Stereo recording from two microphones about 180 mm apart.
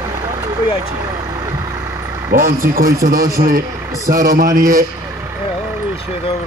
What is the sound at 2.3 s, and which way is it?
A man's voice, 50° right (ahead or behind).